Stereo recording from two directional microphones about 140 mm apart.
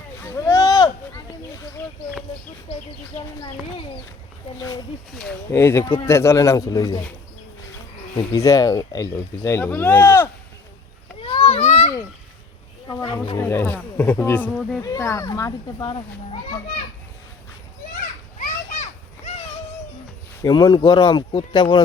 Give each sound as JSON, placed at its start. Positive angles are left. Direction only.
{"t": 0.2, "sound": "a sound", "side_deg": 20}
{"t": 1.8, "sound": "speech", "side_deg": 20}
{"t": 5.5, "sound": "speech", "side_deg": 20}
{"t": 8.1, "sound": "speech", "side_deg": 25}
{"t": 11.2, "sound": "a sound", "side_deg": 40}
{"t": 13.4, "sound": "speech", "side_deg": 15}
{"t": 14.8, "sound": "speech", "side_deg": 20}
{"t": 15.8, "sound": "a child's voice", "side_deg": 35}
{"t": 20.4, "sound": "speech", "side_deg": 30}